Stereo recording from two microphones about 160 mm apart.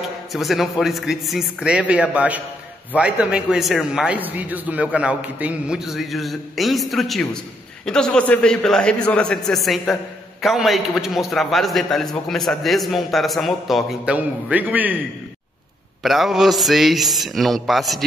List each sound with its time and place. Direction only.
0.3 s a man's voice: centre (ahead or behind)
16.0 s a man's voice: centre (ahead or behind)